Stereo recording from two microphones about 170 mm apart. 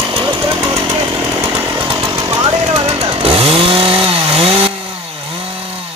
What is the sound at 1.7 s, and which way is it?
Chainsaw, 30° right (ahead or behind).